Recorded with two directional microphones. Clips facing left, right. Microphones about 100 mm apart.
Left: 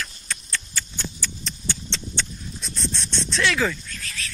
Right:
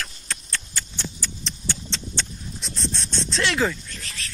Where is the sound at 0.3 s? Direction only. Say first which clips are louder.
Left 1 dB; 35° right (ahead or behind).